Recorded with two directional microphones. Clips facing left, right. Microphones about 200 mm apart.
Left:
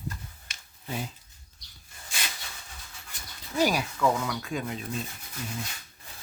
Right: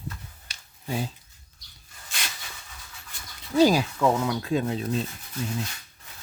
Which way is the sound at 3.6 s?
30° right (ahead or behind).